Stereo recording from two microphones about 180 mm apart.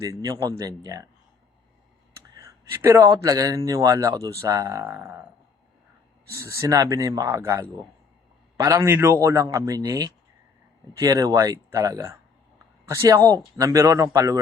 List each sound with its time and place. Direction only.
0.0 s speech: 20° right (ahead or behind)
2.7 s speech: 15° right (ahead or behind)
6.3 s speech: 15° right (ahead or behind)